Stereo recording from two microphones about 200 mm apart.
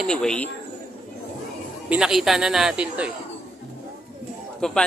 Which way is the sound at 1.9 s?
5° right (ahead or behind).